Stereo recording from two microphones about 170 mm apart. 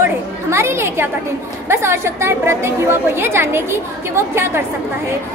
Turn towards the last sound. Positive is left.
turn(degrees=-15)  # may be behind; listen again after turning